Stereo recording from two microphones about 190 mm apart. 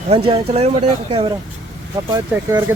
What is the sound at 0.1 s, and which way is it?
Speech, 30° right (ahead or behind).